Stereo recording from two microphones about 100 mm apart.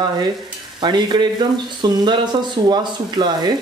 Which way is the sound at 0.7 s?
50° right (ahead or behind).